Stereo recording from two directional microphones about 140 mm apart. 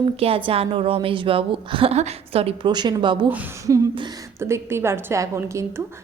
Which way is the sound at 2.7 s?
30° right (ahead or behind).